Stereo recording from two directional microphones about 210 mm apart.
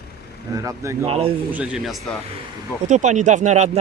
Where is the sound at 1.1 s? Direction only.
25° right (ahead or behind).